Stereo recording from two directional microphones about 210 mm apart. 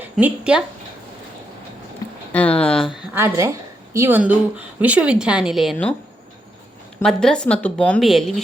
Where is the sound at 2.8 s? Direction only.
10° right (ahead or behind).